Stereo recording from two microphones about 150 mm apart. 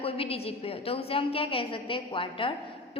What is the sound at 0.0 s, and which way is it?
A woman's voice, 40° left (ahead or behind).